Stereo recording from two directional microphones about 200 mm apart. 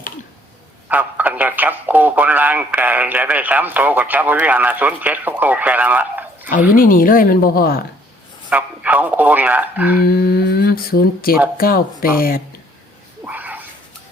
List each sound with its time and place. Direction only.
0.9 s speech: 10° right (ahead or behind)
6.7 s speech: 45° left (ahead or behind)
8.4 s a man's voice: 5° right (ahead or behind)
9.9 s speech: 50° left (ahead or behind)
13.2 s a sound: 10° right (ahead or behind)